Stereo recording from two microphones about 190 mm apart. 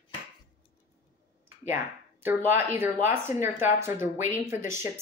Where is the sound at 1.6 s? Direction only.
10° right (ahead or behind).